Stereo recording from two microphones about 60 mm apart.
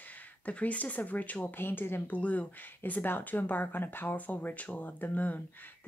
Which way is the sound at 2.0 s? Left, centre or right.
Left.